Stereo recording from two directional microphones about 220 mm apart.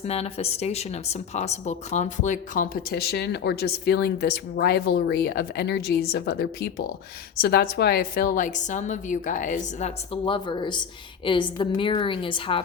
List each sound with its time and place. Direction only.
0.0 s a woman's voice: 30° left (ahead or behind)